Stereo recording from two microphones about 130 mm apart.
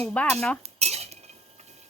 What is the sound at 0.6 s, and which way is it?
Cutlery, 55° right (ahead or behind).